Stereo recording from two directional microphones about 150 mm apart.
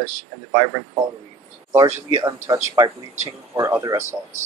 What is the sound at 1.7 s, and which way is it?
Speech, 15° right (ahead or behind).